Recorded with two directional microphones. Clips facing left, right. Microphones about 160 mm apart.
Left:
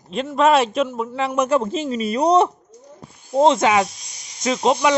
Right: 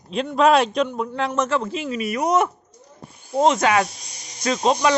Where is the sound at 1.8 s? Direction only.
30° left (ahead or behind).